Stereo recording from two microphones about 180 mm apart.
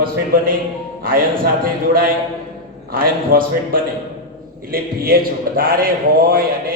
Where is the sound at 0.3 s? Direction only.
50° right (ahead or behind).